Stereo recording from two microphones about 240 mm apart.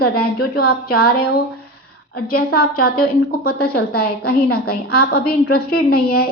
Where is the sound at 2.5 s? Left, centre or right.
Left.